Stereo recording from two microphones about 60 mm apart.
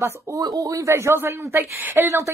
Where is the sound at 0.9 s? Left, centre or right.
Right.